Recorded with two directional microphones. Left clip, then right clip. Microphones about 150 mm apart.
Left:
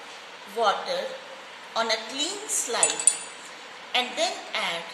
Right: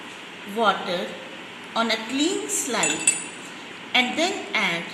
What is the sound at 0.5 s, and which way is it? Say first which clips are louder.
A woman's voice: right 2 dB; 10° left (ahead or behind).